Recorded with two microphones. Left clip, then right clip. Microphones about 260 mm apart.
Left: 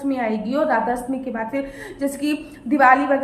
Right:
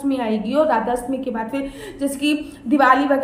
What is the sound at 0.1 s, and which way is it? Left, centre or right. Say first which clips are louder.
A woman's voice: right 1 dB; centre.